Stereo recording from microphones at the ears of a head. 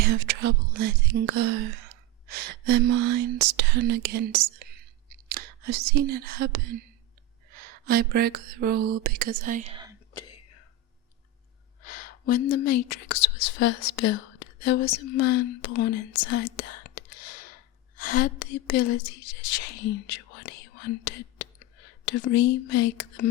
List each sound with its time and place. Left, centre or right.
0.0 s speech: right
10.2 s whispering: left
11.8 s a woman's voice: left